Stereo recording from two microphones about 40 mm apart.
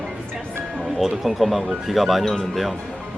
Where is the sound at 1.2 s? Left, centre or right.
Centre.